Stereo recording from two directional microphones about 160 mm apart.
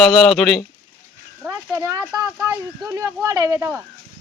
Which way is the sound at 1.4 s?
20° right (ahead or behind).